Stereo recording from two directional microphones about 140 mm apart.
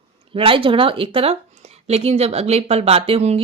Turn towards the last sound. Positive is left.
turn(degrees=-45)  # may be behind; listen again after turning